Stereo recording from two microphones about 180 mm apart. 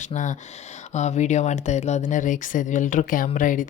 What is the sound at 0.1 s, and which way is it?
Speech, 45° left (ahead or behind).